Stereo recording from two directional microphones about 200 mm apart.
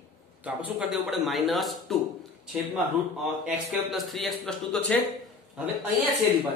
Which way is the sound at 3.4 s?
Centre (ahead or behind).